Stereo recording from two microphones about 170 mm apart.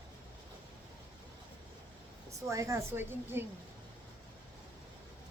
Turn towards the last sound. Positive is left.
turn(degrees=-15)  # may be behind; listen again after turning